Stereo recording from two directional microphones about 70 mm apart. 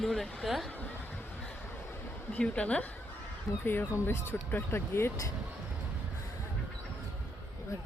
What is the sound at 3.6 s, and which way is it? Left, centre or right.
Speech, left.